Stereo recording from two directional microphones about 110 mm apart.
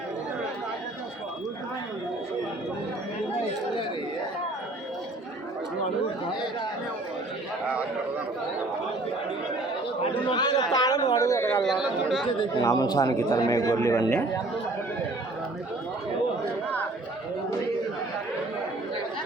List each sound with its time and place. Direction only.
10.2 s chatter: 40° left (ahead or behind); by 11.6 s 25° left (ahead or behind)
11.6 s speech: centre (ahead or behind)
12.6 s a man's voice: 35° left (ahead or behind)